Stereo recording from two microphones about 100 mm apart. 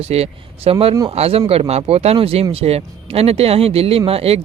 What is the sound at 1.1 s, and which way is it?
Speech, 90° right.